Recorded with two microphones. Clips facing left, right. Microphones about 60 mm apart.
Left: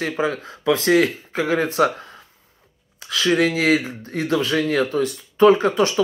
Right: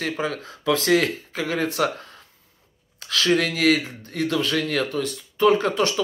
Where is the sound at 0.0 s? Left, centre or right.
Centre.